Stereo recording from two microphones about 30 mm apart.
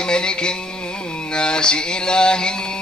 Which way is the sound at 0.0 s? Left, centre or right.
Left.